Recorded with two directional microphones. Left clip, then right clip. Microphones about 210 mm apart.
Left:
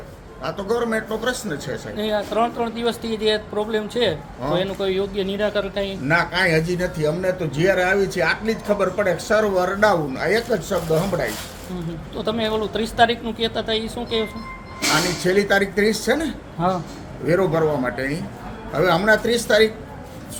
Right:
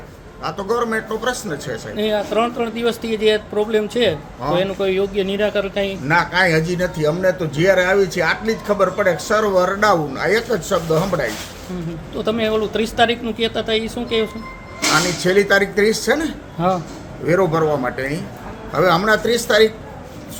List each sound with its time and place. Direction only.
0.4 s a man's voice: 10° right (ahead or behind)
2.0 s speech: 20° right (ahead or behind)
6.1 s a man's voice: 10° right (ahead or behind)
12.1 s a man's voice: 20° right (ahead or behind)